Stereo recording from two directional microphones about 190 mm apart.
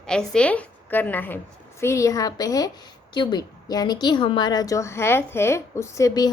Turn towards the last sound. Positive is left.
turn(degrees=20)  # may be behind; listen again after turning